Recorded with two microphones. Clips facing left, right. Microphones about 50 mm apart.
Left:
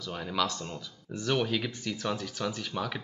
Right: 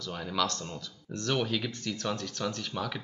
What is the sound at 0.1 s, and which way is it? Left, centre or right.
Speech, centre.